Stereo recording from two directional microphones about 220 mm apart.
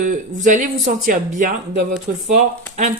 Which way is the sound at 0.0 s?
35° right (ahead or behind).